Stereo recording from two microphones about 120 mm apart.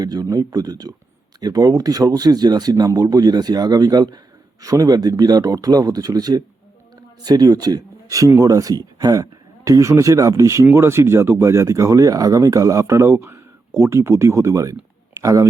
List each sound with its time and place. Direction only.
0.0 s speech: 30° right (ahead or behind)